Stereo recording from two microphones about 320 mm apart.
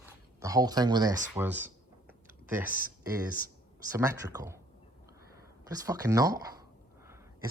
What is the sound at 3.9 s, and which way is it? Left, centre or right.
Speech, centre.